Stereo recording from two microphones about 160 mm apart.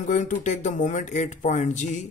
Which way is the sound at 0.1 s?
50° left (ahead or behind).